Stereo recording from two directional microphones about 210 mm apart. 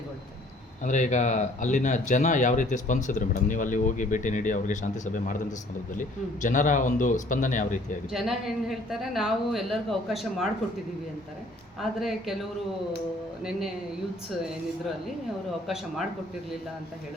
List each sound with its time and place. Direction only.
0.9 s speech: 35° left (ahead or behind)
8.1 s speech: centre (ahead or behind)
11.8 s speech: centre (ahead or behind)
15.6 s speech: centre (ahead or behind)